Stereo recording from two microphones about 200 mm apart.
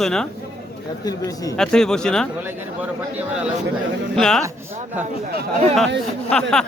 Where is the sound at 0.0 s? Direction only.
5° left (ahead or behind).